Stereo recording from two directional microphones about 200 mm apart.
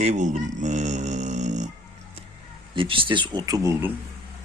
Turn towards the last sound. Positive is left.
turn(degrees=-15)  # may be behind; listen again after turning